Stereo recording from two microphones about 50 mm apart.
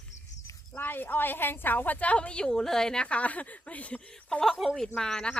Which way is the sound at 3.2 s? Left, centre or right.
Left.